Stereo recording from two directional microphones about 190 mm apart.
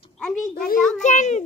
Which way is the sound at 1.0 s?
40° left (ahead or behind).